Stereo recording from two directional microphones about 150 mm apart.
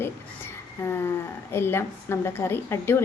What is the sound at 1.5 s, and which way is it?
A woman's voice, 15° left (ahead or behind).